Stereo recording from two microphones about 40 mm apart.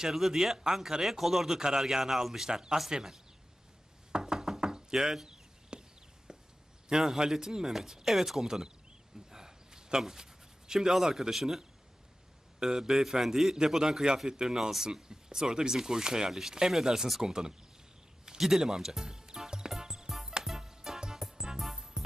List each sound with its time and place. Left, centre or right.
0.1 s speech: centre
4.1 s knock: centre
6.3 s a sound: centre
6.8 s speech: centre
9.3 s a sound: centre
10.7 s speech: centre
14.5 s speech: centre
19.5 s music: centre
20.1 s music: centre